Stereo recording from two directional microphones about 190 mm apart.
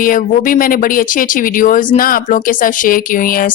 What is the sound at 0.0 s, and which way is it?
Speech, 45° left (ahead or behind).